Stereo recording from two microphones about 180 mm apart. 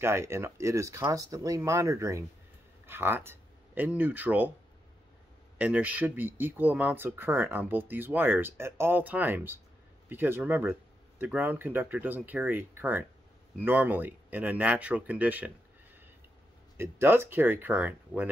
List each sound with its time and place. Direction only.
0.0 s speech: 15° right (ahead or behind)
5.6 s speech: 10° right (ahead or behind)
16.7 s speech: 15° right (ahead or behind)